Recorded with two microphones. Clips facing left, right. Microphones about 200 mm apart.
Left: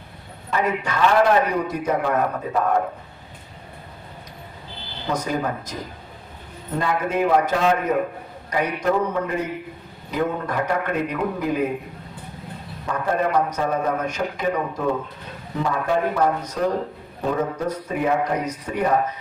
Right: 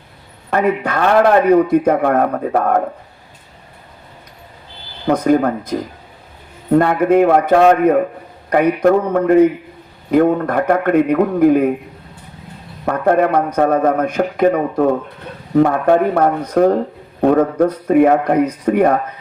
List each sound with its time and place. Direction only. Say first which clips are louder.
0.5 s a man's voice: right 7 dB; 55° right (ahead or behind)
5.0 s a man's voice: right 11 dB; 55° right (ahead or behind)
12.8 s a man's voice: right 9 dB; 65° right (ahead or behind)